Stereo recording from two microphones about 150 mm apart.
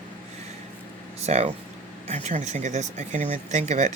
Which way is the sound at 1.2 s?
45° right (ahead or behind).